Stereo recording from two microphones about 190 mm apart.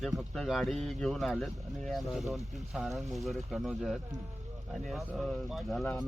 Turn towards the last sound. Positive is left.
turn(degrees=0)  # may be behind; listen again after turning